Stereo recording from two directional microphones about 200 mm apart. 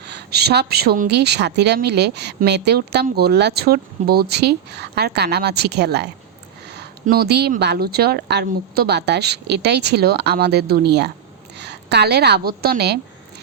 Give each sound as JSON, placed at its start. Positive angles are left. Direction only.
{"t": 0.0, "sound": "a woman's voice", "side_deg": -55}